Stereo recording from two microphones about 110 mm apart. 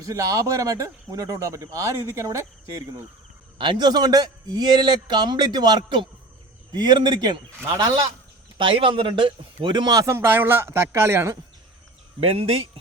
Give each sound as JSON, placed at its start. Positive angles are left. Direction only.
{"t": 0.0, "sound": "speech", "side_deg": -30}
{"t": 3.6, "sound": "a man's voice", "side_deg": -45}
{"t": 8.5, "sound": "a man's voice", "side_deg": -50}
{"t": 10.2, "sound": "speech", "side_deg": -20}
{"t": 12.2, "sound": "speech", "side_deg": -65}